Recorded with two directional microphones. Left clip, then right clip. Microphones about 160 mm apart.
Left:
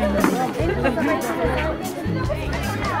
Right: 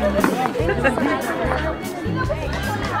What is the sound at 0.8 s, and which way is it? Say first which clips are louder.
Speech: right 3 dB; 45° right (ahead or behind).